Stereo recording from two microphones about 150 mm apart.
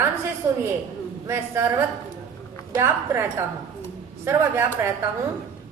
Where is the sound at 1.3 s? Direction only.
15° right (ahead or behind).